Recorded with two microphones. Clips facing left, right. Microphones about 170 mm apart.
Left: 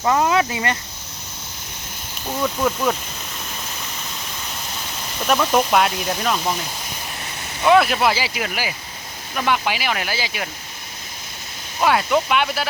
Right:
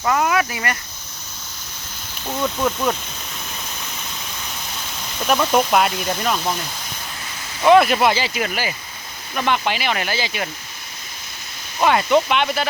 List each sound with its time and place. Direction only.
0.0 s speech: 20° left (ahead or behind)
2.2 s speech: centre (ahead or behind)
5.2 s speech: centre (ahead or behind)
11.8 s speech: centre (ahead or behind)